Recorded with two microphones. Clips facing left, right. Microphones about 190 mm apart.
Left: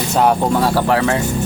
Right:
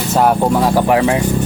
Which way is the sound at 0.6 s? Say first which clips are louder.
Right 4 dB; 15° right (ahead or behind).